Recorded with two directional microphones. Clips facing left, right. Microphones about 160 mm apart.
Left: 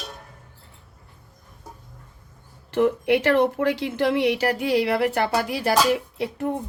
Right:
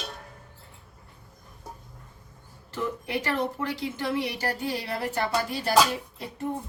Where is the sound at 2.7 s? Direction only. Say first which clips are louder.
Left 11 dB; 75° left (ahead or behind).